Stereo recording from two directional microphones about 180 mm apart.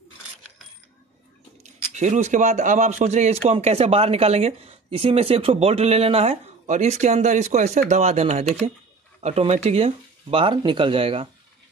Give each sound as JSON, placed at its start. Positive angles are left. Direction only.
{"t": 1.6, "sound": "speech", "side_deg": -40}